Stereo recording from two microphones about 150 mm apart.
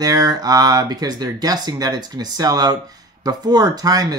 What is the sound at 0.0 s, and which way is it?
Speech, 25° right (ahead or behind).